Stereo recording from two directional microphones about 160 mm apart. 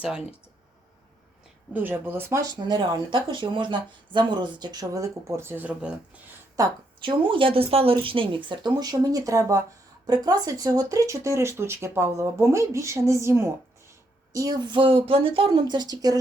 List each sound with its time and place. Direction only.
0.0 s speech: 5° right (ahead or behind)
1.7 s speech: 15° right (ahead or behind)
6.6 s speech: 20° right (ahead or behind)
7.0 s speech: 30° right (ahead or behind)